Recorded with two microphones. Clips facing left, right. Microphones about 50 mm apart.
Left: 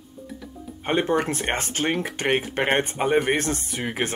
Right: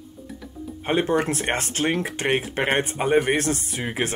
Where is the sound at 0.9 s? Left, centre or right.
Centre.